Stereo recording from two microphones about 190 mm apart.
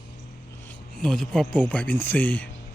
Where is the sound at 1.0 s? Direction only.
5° left (ahead or behind).